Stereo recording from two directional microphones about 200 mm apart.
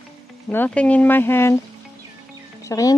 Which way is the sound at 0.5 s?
10° left (ahead or behind).